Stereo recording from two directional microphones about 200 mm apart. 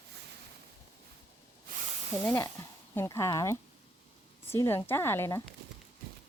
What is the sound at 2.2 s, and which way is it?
Speech, 15° left (ahead or behind).